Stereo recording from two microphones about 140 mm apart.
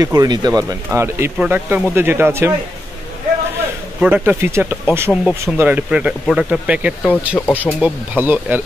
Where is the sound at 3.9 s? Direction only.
10° right (ahead or behind).